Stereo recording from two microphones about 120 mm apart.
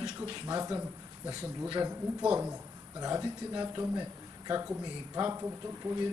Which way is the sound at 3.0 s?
30° right (ahead or behind).